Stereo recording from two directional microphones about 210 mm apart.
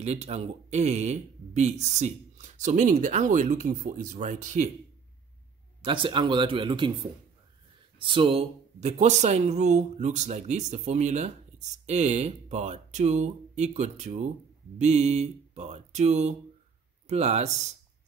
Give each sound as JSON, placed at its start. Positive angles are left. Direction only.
{"t": 0.0, "sound": "speech", "side_deg": -30}
{"t": 5.8, "sound": "speech", "side_deg": -25}
{"t": 8.0, "sound": "speech", "side_deg": -25}